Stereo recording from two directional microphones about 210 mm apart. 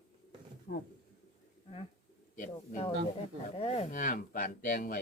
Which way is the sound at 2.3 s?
40° left (ahead or behind).